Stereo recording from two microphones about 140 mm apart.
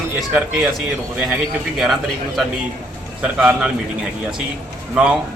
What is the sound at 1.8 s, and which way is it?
A man's voice, centre (ahead or behind).